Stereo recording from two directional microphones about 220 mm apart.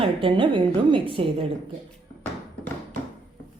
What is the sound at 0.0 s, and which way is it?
A woman's voice, 25° right (ahead or behind).